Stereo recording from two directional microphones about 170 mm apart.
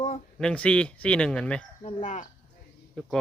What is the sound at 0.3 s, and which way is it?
Speech, 5° left (ahead or behind).